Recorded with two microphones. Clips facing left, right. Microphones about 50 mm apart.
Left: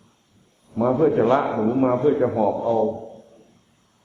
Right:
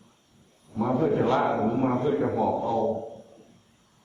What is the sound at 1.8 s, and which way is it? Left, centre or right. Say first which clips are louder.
Speech: left 6 dB; centre.